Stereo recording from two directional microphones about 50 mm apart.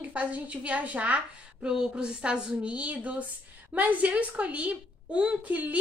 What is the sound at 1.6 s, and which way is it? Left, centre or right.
A woman's voice, centre.